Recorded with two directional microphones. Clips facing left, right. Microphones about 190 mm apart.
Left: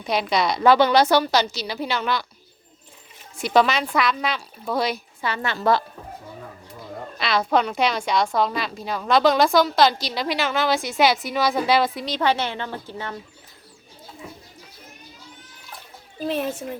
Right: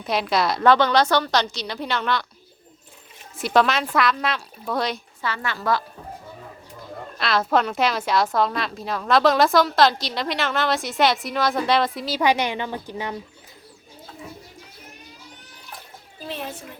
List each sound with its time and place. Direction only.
0.0 s a woman's voice: centre (ahead or behind)
3.3 s a woman's voice: centre (ahead or behind)
5.2 s a woman's voice: 20° left (ahead or behind)
7.2 s a woman's voice: centre (ahead or behind)